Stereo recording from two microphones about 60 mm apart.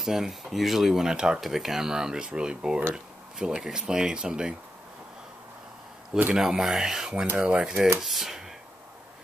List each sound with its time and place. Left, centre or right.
0.0 s speech: centre
6.3 s speech: centre
8.0 s speech: centre